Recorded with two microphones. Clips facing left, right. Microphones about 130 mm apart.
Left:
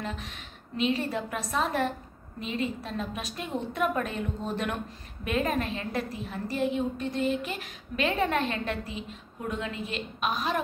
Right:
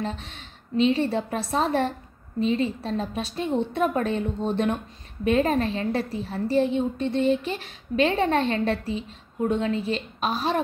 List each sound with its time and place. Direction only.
0.0 s a woman's voice: 30° right (ahead or behind)